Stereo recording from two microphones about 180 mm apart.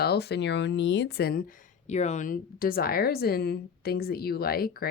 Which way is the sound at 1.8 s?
40° left (ahead or behind).